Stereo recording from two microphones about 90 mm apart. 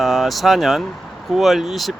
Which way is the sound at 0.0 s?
Centre (ahead or behind).